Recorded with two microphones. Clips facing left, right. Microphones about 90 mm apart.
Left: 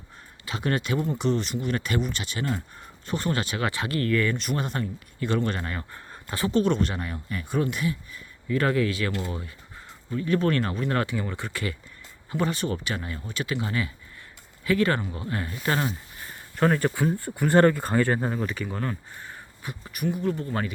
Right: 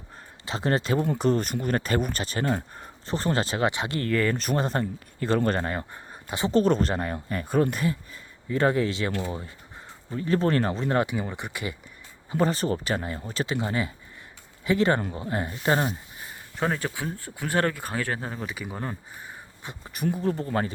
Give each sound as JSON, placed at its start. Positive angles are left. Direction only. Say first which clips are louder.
{"t": 0.4, "sound": "speech", "louder": "right 2 dB", "side_deg": -30}
{"t": 1.2, "sound": "speech", "louder": "right 2 dB", "side_deg": -45}
{"t": 3.1, "sound": "speech", "louder": "right 2 dB", "side_deg": -30}
{"t": 6.1, "sound": "a sound", "louder": "left 1 dB", "side_deg": -15}
{"t": 6.5, "sound": "speech", "louder": "right 2 dB", "side_deg": -40}
{"t": 10.1, "sound": "speech", "louder": "even", "side_deg": -35}
{"t": 12.4, "sound": "speech", "louder": "right 3 dB", "side_deg": -35}
{"t": 16.6, "sound": "speech", "louder": "left 5 dB", "side_deg": 0}
{"t": 19.6, "sound": "speech", "louder": "even", "side_deg": -25}